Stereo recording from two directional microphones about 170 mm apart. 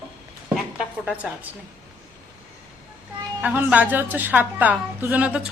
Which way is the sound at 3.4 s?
10° right (ahead or behind).